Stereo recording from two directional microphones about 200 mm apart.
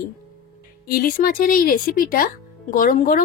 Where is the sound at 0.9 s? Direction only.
45° left (ahead or behind).